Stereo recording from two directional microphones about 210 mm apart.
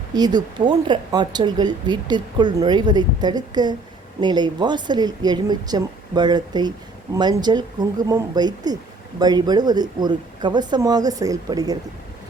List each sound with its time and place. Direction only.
0.1 s speech: 20° right (ahead or behind)